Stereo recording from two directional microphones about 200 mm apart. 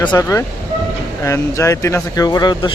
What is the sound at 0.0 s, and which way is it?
Speech, 20° left (ahead or behind).